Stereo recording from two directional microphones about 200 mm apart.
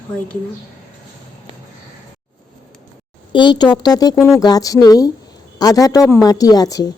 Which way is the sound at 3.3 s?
20° left (ahead or behind).